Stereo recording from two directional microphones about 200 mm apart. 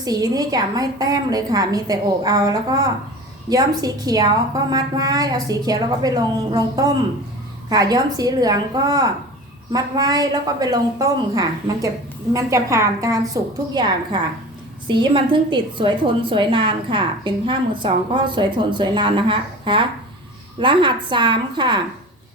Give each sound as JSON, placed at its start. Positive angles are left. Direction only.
{"t": 0.0, "sound": "a woman's voice", "side_deg": -20}